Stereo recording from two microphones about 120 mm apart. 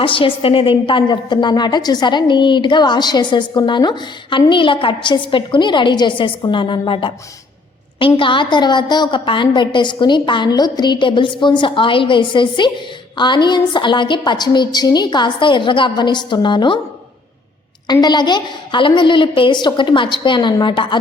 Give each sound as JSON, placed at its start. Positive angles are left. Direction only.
{"t": 0.0, "sound": "a woman's voice", "side_deg": 45}
{"t": 18.0, "sound": "a woman's voice", "side_deg": 35}